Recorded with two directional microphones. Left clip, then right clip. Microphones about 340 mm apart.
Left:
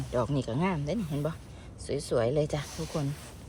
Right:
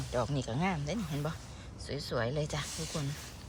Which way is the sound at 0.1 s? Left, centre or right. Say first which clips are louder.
Left 4 dB; centre.